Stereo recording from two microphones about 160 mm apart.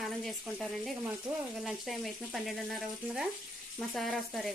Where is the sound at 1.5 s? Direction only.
Centre (ahead or behind).